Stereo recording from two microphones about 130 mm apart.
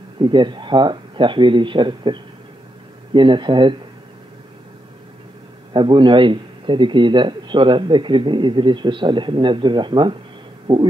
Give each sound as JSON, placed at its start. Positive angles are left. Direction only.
{"t": 0.2, "sound": "a man's voice", "side_deg": -35}
{"t": 5.7, "sound": "a man's voice", "side_deg": -40}